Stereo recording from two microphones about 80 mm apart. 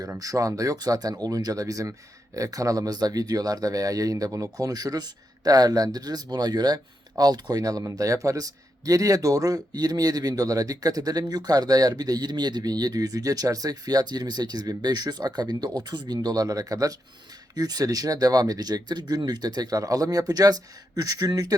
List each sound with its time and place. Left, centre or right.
0.2 s a man's voice: right